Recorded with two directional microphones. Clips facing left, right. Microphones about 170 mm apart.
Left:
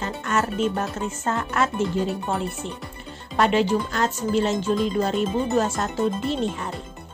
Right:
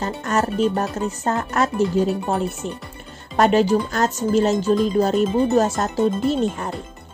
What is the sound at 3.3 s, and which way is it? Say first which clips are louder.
Speech: right 4 dB; 45° right (ahead or behind).